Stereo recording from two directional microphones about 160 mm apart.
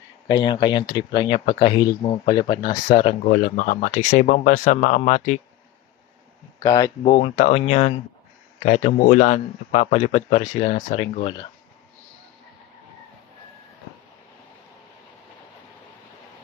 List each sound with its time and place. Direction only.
0.3 s speech: 30° left (ahead or behind)
2.4 s speech: 30° left (ahead or behind)
3.0 s speech: 50° left (ahead or behind)
6.6 s speech: 25° left (ahead or behind)
7.1 s speech: 45° left (ahead or behind)